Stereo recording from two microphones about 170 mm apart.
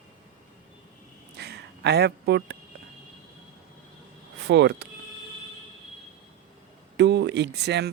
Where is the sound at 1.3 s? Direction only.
75° right (ahead or behind).